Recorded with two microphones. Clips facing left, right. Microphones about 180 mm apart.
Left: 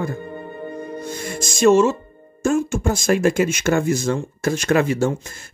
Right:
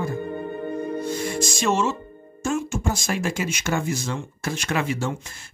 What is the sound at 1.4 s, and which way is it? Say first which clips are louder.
Speech: left 10 dB; 50° left (ahead or behind).